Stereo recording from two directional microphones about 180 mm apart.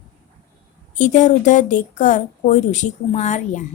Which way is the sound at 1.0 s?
40° left (ahead or behind).